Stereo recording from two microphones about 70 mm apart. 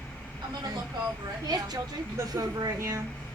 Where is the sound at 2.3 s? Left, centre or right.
Right.